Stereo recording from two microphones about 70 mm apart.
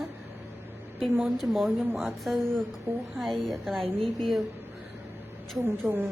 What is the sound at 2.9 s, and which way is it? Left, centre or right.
Speech, right.